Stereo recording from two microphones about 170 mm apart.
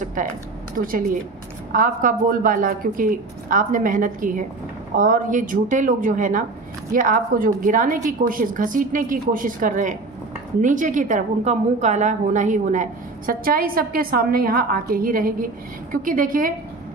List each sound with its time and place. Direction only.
0.0 s a sound: 50° right (ahead or behind)
1.7 s a woman's voice: 50° right (ahead or behind)
13.3 s a woman's voice: 55° right (ahead or behind)